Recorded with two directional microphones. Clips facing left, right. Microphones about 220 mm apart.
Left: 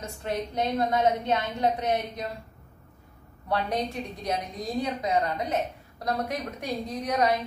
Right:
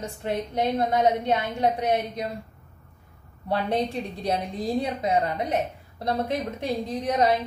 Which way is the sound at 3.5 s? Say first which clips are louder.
Right 3 dB; 30° right (ahead or behind).